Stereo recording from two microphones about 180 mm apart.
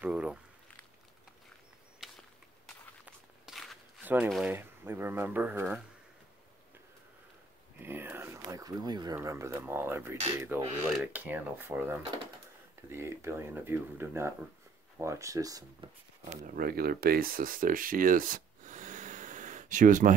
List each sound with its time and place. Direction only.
0.0 s speech: 5° right (ahead or behind)
2.0 s a sound: centre (ahead or behind)
3.4 s walk: centre (ahead or behind)
4.0 s a sound: 10° right (ahead or behind)
4.3 s speech: centre (ahead or behind)
4.6 s speech: 10° right (ahead or behind)
7.8 s speech: 10° right (ahead or behind)
16.5 s speech: 55° right (ahead or behind)